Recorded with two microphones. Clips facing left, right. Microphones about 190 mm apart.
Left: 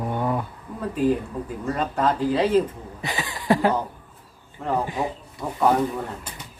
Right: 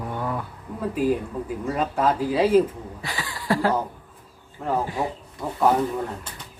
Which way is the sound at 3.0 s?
20° left (ahead or behind).